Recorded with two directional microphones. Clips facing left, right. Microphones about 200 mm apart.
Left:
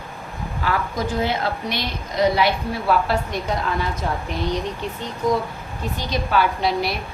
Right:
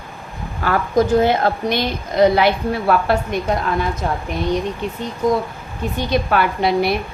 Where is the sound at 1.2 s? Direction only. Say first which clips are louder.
Right 7 dB; 50° right (ahead or behind).